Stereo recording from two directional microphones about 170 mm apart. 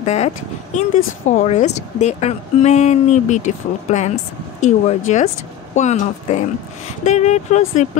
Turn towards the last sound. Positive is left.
turn(degrees=45)  # may be behind; listen again after turning